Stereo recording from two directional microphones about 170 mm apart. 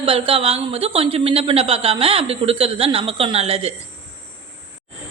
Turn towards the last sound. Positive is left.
turn(degrees=-35)  # may be behind; listen again after turning